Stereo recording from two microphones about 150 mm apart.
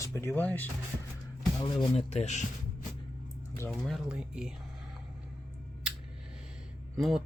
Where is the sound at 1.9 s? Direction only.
50° left (ahead or behind).